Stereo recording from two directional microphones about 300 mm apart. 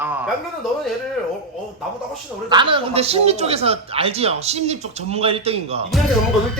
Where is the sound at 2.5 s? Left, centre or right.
Centre.